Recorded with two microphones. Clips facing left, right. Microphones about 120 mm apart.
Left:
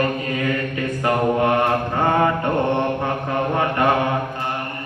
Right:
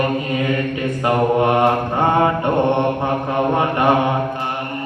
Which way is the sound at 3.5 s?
20° right (ahead or behind).